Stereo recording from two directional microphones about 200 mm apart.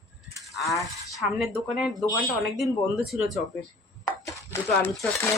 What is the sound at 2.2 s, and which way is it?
Speech, centre (ahead or behind).